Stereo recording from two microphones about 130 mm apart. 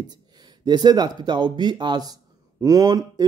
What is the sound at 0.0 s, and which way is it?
Speech, 30° right (ahead or behind).